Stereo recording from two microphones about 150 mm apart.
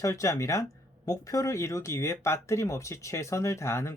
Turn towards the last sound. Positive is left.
turn(degrees=20)  # may be behind; listen again after turning